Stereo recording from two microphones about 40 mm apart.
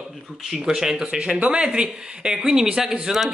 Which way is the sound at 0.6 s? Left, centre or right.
Centre.